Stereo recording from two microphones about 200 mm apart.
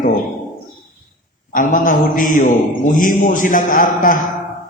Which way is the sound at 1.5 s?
40° left (ahead or behind).